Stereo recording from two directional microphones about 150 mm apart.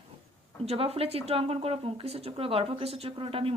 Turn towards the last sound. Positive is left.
turn(degrees=-40)  # may be behind; listen again after turning